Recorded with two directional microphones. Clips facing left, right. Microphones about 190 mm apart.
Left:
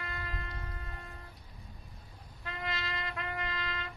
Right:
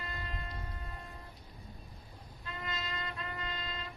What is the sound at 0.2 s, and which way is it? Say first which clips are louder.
Music: left 1 dB; 80° left.